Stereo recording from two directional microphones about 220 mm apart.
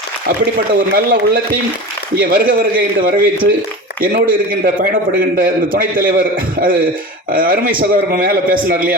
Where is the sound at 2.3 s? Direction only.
40° right (ahead or behind).